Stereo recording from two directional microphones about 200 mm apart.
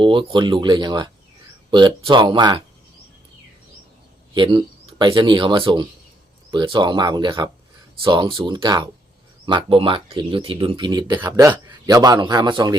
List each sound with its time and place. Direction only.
0.0 s speech: 25° right (ahead or behind)
4.4 s speech: 25° right (ahead or behind)